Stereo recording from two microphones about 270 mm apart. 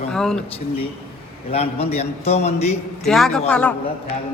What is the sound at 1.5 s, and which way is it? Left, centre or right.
Speech, left.